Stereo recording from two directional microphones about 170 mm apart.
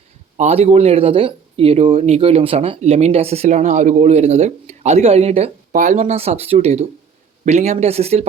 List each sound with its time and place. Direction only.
0.3 s speech: 40° right (ahead or behind)